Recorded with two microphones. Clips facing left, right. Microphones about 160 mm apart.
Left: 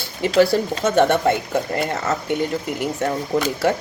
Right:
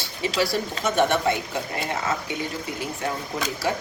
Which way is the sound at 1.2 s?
55° left (ahead or behind).